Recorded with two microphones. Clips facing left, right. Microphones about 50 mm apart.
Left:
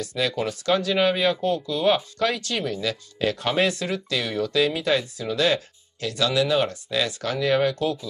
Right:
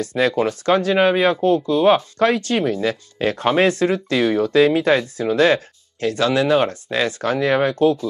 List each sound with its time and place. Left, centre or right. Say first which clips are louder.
0.0 s speech: right 7 dB; right